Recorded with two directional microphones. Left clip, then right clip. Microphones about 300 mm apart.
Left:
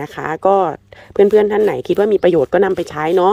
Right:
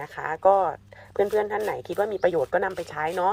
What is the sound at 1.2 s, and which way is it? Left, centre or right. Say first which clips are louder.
Speech: left 13 dB; left.